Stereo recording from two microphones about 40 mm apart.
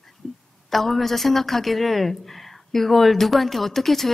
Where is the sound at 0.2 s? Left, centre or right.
Centre.